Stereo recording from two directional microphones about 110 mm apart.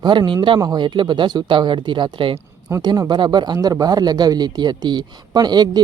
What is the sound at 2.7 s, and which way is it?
Speech, 25° right (ahead or behind).